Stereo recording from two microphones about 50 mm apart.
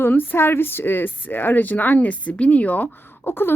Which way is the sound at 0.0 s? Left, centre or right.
Left.